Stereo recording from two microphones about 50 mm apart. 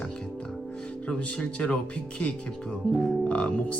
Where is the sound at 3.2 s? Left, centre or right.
Left.